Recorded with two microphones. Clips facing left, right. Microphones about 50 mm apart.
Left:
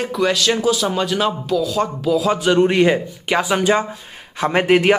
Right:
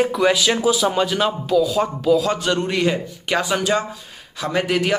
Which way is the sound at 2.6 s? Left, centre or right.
Left.